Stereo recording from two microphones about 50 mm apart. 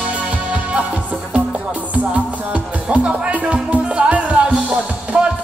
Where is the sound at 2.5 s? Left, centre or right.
Right.